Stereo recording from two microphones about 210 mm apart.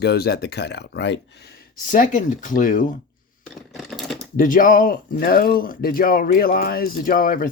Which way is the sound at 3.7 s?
Centre (ahead or behind).